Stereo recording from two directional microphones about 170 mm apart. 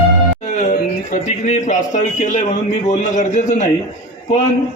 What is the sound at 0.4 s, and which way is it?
A man's voice, 45° left (ahead or behind).